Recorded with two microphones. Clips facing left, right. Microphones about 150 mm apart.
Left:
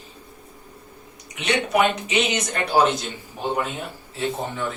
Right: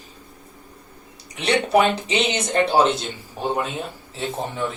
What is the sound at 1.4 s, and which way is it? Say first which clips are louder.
Speech: right 3 dB; 30° right (ahead or behind).